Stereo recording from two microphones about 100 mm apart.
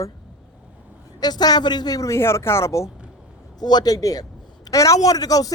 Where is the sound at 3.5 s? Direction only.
45° left (ahead or behind).